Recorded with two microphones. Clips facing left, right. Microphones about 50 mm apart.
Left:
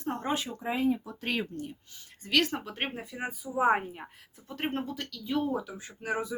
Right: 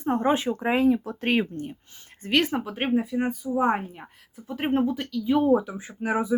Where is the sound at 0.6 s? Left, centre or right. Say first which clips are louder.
Right 7 dB; right.